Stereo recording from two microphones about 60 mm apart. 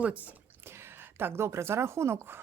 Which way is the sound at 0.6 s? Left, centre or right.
Right.